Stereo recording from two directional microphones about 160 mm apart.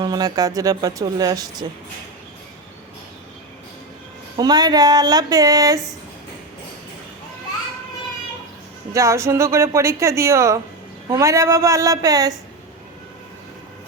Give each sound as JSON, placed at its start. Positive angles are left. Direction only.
{"t": 0.0, "sound": "speech", "side_deg": -25}
{"t": 4.4, "sound": "speech", "side_deg": -25}
{"t": 8.9, "sound": "speech", "side_deg": -20}